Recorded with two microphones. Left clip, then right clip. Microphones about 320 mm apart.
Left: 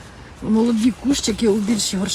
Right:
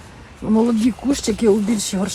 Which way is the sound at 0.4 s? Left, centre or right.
Centre.